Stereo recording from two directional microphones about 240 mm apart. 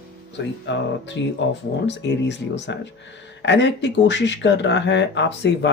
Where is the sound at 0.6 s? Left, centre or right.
Left.